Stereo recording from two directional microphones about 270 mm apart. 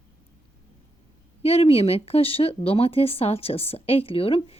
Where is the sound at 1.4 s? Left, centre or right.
Left.